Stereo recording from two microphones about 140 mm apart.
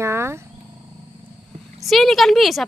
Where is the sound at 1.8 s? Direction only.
Centre (ahead or behind).